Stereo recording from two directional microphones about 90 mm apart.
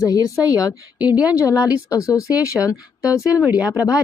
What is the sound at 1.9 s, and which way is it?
Speech, 35° left (ahead or behind).